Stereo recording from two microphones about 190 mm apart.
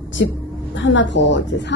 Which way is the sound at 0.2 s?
70° left (ahead or behind).